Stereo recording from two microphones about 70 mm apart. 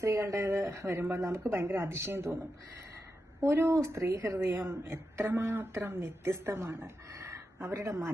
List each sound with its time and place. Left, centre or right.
0.0 s a woman's voice: right
3.4 s a woman's voice: right